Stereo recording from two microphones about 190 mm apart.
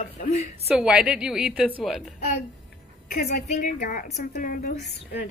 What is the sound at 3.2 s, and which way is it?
A woman's voice, 40° left (ahead or behind).